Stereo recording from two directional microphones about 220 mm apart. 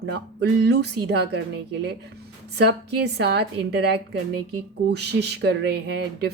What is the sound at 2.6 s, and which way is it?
Speech, 50° right (ahead or behind).